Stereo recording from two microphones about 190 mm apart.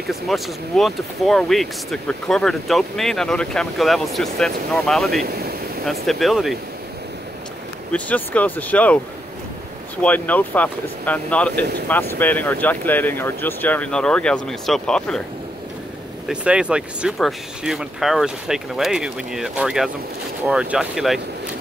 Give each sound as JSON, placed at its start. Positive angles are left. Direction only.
{"t": 0.0, "sound": "speech", "side_deg": 0}
{"t": 5.2, "sound": "speech", "side_deg": -55}
{"t": 5.9, "sound": "speech", "side_deg": 0}
{"t": 7.9, "sound": "speech", "side_deg": 10}
{"t": 10.0, "sound": "speech", "side_deg": 10}
{"t": 16.3, "sound": "speech", "side_deg": -5}